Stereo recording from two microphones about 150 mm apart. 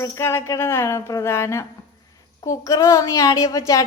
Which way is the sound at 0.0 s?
15° left (ahead or behind).